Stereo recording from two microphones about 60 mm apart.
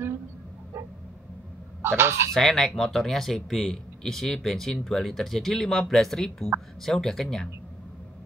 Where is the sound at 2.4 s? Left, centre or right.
Centre.